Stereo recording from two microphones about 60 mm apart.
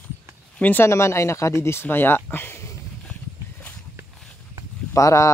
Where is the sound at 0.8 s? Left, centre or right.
Left.